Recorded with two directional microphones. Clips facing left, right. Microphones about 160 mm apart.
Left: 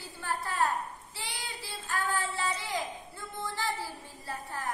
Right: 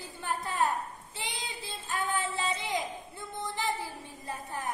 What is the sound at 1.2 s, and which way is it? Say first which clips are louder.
Child singing: right 2 dB; 20° right (ahead or behind).